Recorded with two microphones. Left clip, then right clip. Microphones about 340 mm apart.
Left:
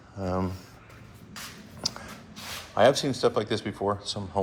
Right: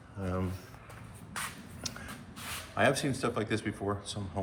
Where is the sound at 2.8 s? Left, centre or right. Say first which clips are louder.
Left 7 dB; centre.